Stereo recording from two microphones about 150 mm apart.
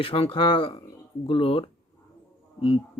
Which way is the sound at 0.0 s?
40° left (ahead or behind).